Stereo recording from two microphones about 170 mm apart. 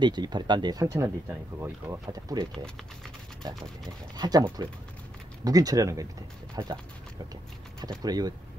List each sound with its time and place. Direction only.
0.0 s speech: 25° right (ahead or behind)
4.2 s speech: 25° right (ahead or behind)
8.0 s speech: 25° right (ahead or behind)